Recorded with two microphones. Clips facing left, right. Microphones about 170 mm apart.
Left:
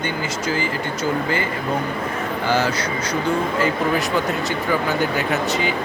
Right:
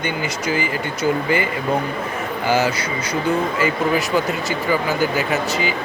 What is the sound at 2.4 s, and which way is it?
Speech, 10° right (ahead or behind).